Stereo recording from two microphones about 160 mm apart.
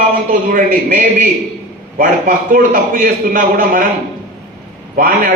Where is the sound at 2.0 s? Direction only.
60° right (ahead or behind).